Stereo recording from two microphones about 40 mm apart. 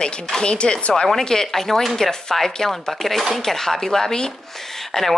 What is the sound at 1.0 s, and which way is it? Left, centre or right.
Speech, centre.